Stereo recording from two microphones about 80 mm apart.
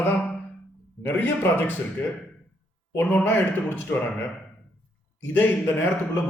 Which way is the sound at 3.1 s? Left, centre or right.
Left.